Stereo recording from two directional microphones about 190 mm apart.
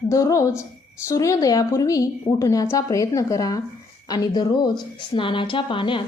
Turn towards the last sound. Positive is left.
turn(degrees=25)  # may be behind; listen again after turning